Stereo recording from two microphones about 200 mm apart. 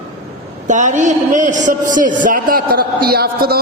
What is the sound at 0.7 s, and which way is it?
A man's voice, 35° right (ahead or behind).